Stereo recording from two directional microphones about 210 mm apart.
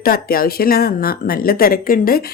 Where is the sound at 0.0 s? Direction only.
45° left (ahead or behind).